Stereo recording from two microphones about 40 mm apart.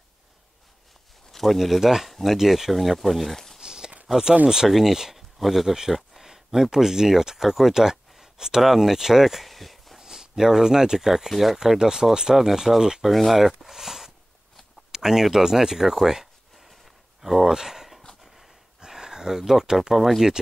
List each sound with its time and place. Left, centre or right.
1.3 s speech: centre
2.0 s speech: centre
3.6 s a sound: centre
4.6 s speech: centre
9.5 s a sound: centre
9.9 s speech: centre
11.5 s speech: centre
13.1 s speech: centre
14.9 s a sound: centre
18.2 s dog: centre
18.8 s a sound: centre
19.9 s speech: centre